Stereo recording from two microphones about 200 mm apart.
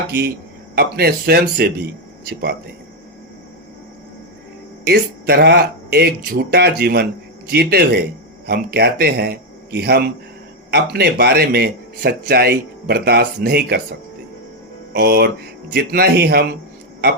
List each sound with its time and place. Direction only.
0.8 s speech: 50° right (ahead or behind)
4.9 s speech: 55° right (ahead or behind)
14.9 s speech: 50° right (ahead or behind)